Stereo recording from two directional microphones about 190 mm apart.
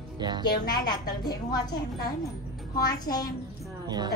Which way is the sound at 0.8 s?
20° left (ahead or behind).